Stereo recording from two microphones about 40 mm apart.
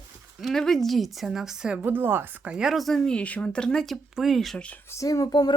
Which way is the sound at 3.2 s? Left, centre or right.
Left.